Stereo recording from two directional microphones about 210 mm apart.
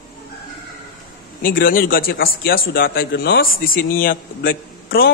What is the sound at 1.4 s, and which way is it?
A man's voice, 40° left (ahead or behind).